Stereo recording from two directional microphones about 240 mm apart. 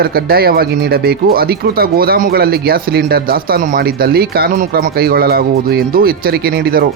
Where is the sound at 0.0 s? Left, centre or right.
Right.